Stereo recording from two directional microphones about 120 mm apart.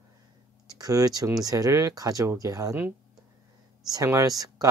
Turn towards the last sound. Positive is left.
turn(degrees=-30)  # may be behind; listen again after turning